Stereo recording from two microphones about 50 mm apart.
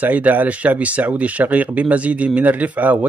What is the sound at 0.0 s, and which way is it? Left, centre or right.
Speech, right.